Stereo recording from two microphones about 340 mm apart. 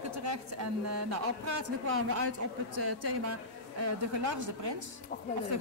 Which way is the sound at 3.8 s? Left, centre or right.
Right.